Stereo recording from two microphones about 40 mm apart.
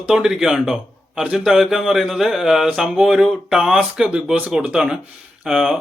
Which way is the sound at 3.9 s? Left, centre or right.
Centre.